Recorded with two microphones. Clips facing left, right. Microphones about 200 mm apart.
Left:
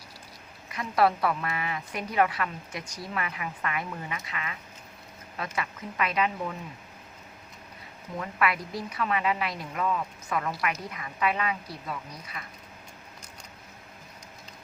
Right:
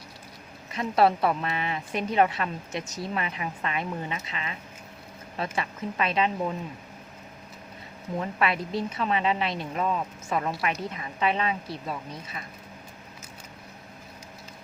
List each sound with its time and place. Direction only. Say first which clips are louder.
0.7 s a woman's voice: right 2 dB; 25° right (ahead or behind)
8.2 s a woman's voice: right 1 dB; 25° right (ahead or behind)